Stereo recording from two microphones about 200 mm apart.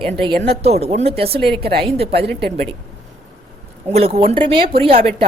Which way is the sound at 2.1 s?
55° right (ahead or behind).